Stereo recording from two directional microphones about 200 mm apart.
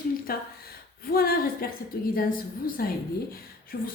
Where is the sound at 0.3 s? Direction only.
50° left (ahead or behind).